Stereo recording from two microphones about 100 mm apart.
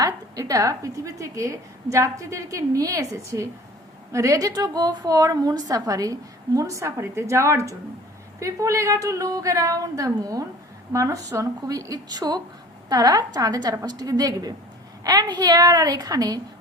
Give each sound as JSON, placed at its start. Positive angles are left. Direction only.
{"t": 0.0, "sound": "a woman's voice", "side_deg": -35}